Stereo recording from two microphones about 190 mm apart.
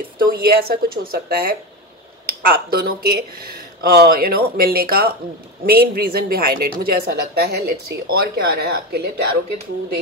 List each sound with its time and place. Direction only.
0.2 s a woman's voice: 50° right (ahead or behind)